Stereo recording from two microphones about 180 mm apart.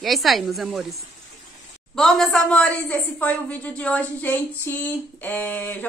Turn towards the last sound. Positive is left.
turn(degrees=10)  # may be behind; listen again after turning